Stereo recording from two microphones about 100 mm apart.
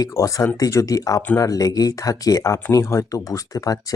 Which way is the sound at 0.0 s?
35° left (ahead or behind).